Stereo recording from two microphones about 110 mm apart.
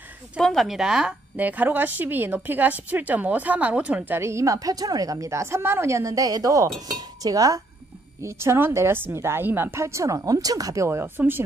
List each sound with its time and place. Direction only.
0.4 s a woman's voice: centre (ahead or behind); by 6.7 s 30° right (ahead or behind)
6.9 s chink: 35° right (ahead or behind)
8.2 s a woman's voice: 25° right (ahead or behind)